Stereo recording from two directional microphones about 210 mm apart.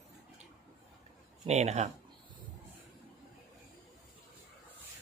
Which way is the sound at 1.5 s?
30° right (ahead or behind).